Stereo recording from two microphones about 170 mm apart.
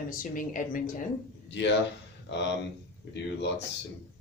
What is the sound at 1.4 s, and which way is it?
Speech, 90° left.